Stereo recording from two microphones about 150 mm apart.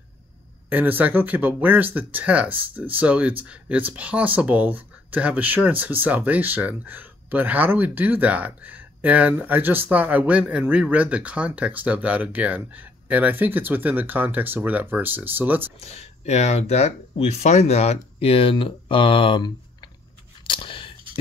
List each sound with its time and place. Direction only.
0.7 s speech: 10° right (ahead or behind)
15.8 s speech: 45° left (ahead or behind)
20.4 s biting: 35° left (ahead or behind)